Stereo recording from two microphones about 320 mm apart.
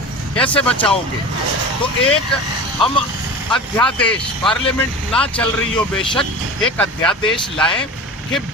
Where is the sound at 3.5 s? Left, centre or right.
Centre.